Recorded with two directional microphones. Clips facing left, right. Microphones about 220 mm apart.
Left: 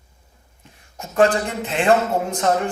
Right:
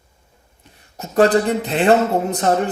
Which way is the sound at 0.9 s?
35° right (ahead or behind).